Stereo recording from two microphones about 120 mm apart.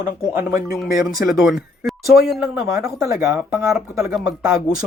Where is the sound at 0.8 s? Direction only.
5° left (ahead or behind).